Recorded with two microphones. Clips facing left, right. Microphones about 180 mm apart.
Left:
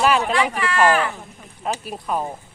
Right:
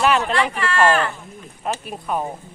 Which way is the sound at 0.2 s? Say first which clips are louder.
Even; 10° left (ahead or behind).